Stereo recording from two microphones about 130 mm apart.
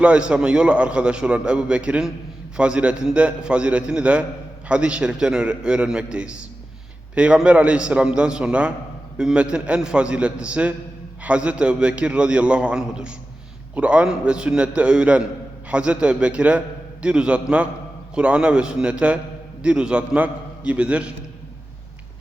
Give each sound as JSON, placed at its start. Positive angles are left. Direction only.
{"t": 0.0, "sound": "a man's voice", "side_deg": -10}